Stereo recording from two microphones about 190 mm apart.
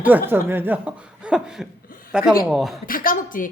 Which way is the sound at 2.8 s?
50° left (ahead or behind).